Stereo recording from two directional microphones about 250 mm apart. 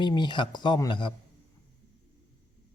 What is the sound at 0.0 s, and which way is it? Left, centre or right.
Speech, centre.